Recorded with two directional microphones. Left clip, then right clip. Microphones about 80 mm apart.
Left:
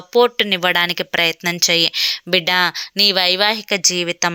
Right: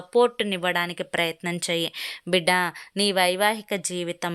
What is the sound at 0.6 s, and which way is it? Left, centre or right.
Speech, left.